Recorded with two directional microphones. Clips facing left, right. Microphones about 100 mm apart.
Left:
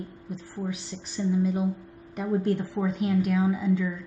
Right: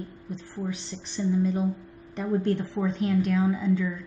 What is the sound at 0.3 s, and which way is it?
Speech, 5° left (ahead or behind).